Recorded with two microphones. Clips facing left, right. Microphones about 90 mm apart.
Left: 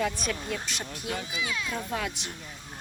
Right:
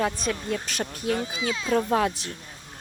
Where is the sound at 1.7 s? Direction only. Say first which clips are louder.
Right 10 dB; 45° right (ahead or behind).